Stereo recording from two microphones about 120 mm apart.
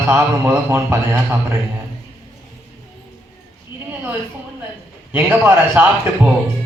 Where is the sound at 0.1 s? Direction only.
20° right (ahead or behind).